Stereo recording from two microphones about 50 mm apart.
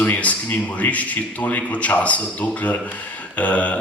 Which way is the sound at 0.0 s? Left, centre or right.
Left.